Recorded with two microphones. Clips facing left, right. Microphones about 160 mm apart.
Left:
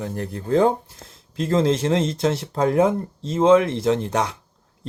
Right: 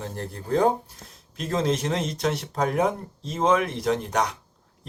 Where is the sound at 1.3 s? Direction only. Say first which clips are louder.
Left 5 dB; 30° left (ahead or behind).